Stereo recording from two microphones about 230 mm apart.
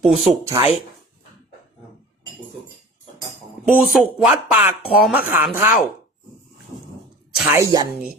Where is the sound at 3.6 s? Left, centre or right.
Centre.